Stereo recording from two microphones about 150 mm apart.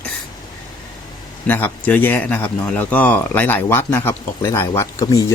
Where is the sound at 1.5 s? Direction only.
10° left (ahead or behind).